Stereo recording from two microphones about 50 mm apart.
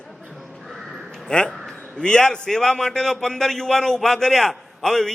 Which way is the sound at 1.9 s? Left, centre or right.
Centre.